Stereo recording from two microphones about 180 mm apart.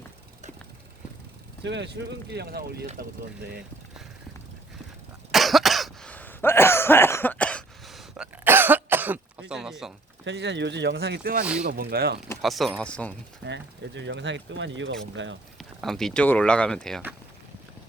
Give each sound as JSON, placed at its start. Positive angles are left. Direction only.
{"t": 1.6, "sound": "speech", "side_deg": -75}
{"t": 2.8, "sound": "speech", "side_deg": -40}
{"t": 5.3, "sound": "cough", "side_deg": 0}
{"t": 9.5, "sound": "a sound", "side_deg": 0}
{"t": 10.2, "sound": "speech", "side_deg": -75}
{"t": 12.4, "sound": "speech", "side_deg": 0}
{"t": 13.4, "sound": "speech", "side_deg": -80}
{"t": 15.5, "sound": "speech", "side_deg": 0}